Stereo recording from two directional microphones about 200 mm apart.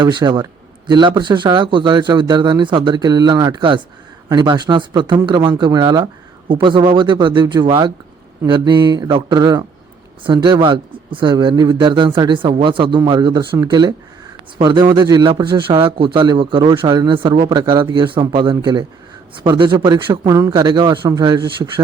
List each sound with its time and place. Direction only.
0.0 s a man's voice: 25° right (ahead or behind)